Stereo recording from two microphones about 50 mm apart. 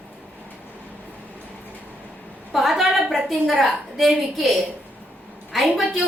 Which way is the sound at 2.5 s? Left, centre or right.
Centre.